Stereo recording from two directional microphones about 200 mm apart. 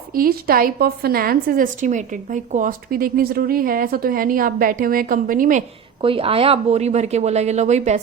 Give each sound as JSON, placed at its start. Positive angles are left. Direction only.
{"t": 0.1, "sound": "a woman's voice", "side_deg": -45}
{"t": 6.0, "sound": "speech", "side_deg": -25}